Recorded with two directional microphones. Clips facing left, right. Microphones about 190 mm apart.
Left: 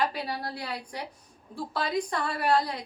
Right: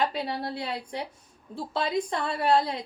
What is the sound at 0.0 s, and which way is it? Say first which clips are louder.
A woman's voice: right 2 dB; 25° right (ahead or behind).